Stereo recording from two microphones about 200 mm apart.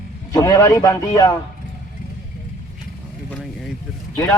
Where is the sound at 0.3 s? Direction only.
15° left (ahead or behind).